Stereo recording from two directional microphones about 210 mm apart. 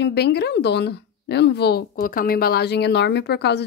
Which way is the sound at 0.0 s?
50° left (ahead or behind).